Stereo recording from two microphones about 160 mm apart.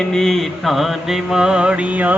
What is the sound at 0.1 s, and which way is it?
Mantra, 5° left (ahead or behind).